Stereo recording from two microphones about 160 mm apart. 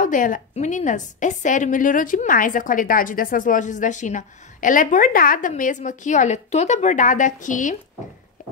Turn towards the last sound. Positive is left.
turn(degrees=50)  # may be behind; listen again after turning